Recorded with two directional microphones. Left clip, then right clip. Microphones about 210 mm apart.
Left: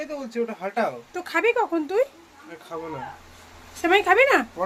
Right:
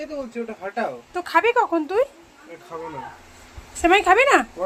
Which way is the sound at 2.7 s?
60° left (ahead or behind).